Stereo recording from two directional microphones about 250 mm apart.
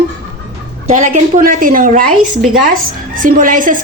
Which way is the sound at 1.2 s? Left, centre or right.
Right.